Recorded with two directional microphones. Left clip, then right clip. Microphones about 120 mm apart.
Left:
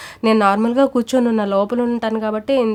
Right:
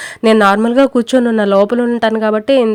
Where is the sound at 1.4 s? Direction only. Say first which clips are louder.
Right 6 dB; 40° right (ahead or behind).